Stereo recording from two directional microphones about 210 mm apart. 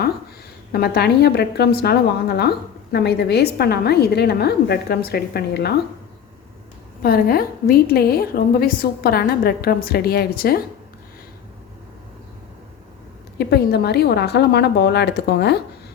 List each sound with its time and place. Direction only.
0.7 s a woman's voice: 50° left (ahead or behind)
7.0 s a woman's voice: 45° left (ahead or behind)
13.4 s a woman's voice: 50° left (ahead or behind)